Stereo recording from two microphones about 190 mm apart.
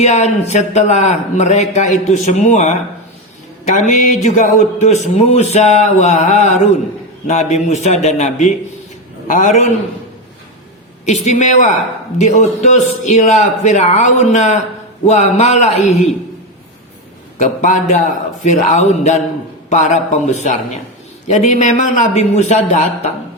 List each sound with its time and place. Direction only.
0.0 s speech: 35° left (ahead or behind)
3.8 s speech: 40° left (ahead or behind)
11.0 s speech: 35° left (ahead or behind)
17.4 s speech: 40° left (ahead or behind)